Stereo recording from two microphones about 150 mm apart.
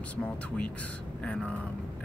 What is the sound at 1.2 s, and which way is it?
Speech, 5° left (ahead or behind).